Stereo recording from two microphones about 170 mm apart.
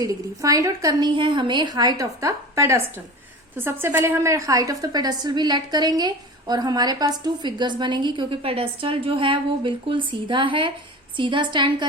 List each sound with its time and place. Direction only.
0.0 s a woman's voice: 20° right (ahead or behind)